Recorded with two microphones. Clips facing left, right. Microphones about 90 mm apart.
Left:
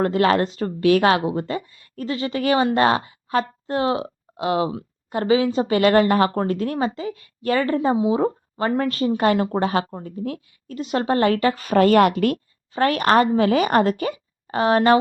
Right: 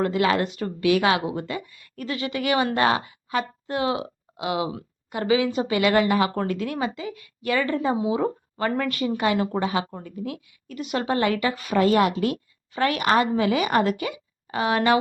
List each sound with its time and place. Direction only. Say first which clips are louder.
0.0 s a woman's voice: left 4 dB; 40° left (ahead or behind)
9.9 s a woman's voice: left 4 dB; 30° left (ahead or behind)
11.8 s a woman's voice: left 4 dB; 60° left (ahead or behind)
12.7 s a woman's voice: left 4 dB; 40° left (ahead or behind)